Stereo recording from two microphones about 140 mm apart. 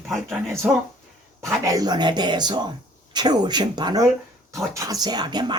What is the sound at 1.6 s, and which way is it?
Speech, 25° right (ahead or behind).